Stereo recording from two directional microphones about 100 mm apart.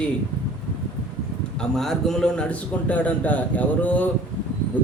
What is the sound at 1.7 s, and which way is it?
A man's voice, 5° left (ahead or behind).